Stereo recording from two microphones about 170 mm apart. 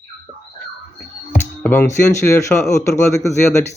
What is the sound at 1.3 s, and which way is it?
Speech, 15° left (ahead or behind).